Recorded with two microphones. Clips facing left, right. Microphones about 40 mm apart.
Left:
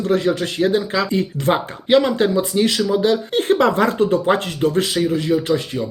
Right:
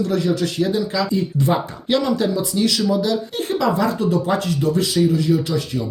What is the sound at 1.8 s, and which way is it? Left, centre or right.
Speech, left.